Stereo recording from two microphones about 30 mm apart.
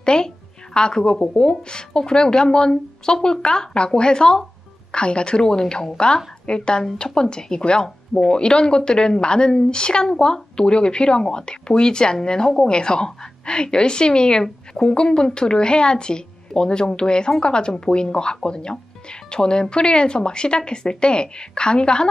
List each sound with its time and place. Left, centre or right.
0.0 s a woman's voice: left